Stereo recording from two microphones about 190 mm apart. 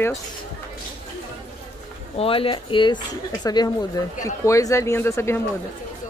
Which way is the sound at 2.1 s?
30° left (ahead or behind).